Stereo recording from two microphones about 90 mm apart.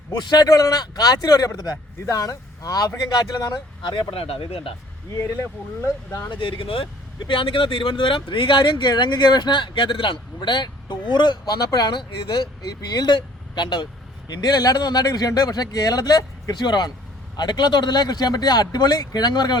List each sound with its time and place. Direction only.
0.1 s speech: 55° left (ahead or behind)
0.4 s speech: 40° left (ahead or behind); by 4.7 s 90° left
5.4 s speech: 35° left (ahead or behind)
6.4 s speech: 80° left; by 19.5 s 50° left (ahead or behind)